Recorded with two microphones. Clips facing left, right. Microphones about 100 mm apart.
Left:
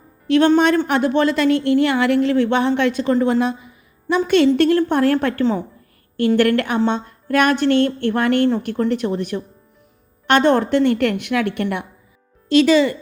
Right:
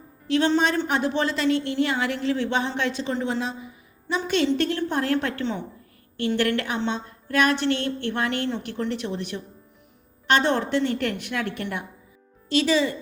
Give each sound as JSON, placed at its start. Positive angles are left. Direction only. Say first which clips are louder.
{"t": 0.3, "sound": "a woman's voice", "louder": "left 7 dB", "side_deg": 60}
{"t": 6.1, "sound": "a woman's voice", "louder": "left 8 dB", "side_deg": 55}